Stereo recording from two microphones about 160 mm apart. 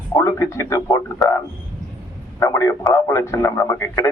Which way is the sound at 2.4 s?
20° left (ahead or behind).